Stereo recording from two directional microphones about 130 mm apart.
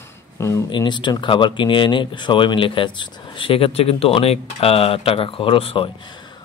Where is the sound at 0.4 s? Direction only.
25° left (ahead or behind).